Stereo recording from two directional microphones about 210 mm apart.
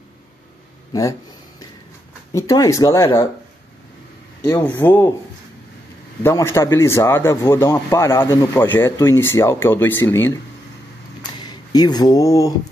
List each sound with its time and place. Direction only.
2.3 s a man's voice: 15° left (ahead or behind)
4.5 s a man's voice: 10° left (ahead or behind)
6.2 s a man's voice: 15° left (ahead or behind)
11.4 s speech: 20° left (ahead or behind)